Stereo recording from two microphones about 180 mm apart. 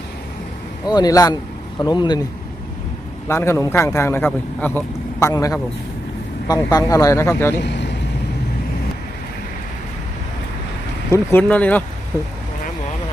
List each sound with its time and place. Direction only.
0.9 s speech: 20° left (ahead or behind)
3.2 s a man's voice: 15° left (ahead or behind)
7.6 s speech: 75° left (ahead or behind)
11.1 s a man's voice: 10° left (ahead or behind)